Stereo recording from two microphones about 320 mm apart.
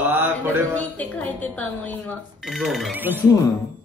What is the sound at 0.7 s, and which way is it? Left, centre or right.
Speech, centre.